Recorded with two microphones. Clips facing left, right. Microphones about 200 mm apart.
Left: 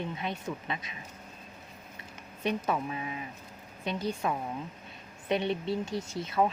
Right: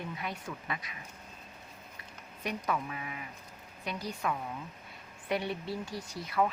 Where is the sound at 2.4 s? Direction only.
25° left (ahead or behind).